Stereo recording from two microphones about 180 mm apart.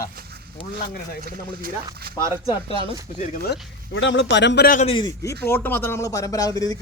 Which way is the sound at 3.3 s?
60° left (ahead or behind).